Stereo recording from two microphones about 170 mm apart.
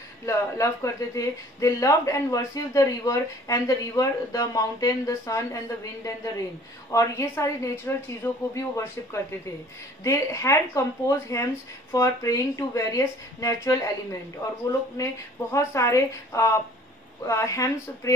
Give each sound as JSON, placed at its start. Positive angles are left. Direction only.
{"t": 0.2, "sound": "a woman's voice", "side_deg": 20}
{"t": 6.9, "sound": "a woman's voice", "side_deg": 20}
{"t": 15.0, "sound": "a woman's voice", "side_deg": 15}